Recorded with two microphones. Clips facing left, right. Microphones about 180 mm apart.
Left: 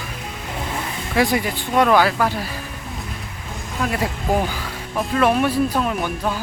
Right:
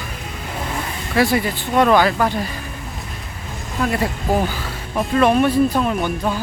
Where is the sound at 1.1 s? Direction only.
15° left (ahead or behind).